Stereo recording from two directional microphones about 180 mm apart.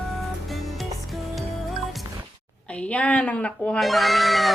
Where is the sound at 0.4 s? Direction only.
Centre (ahead or behind).